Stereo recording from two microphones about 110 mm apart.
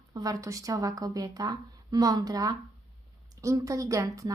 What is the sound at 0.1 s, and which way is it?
A woman's voice, 35° right (ahead or behind).